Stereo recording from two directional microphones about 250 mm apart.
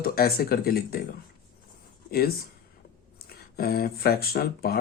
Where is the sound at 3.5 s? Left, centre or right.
Left.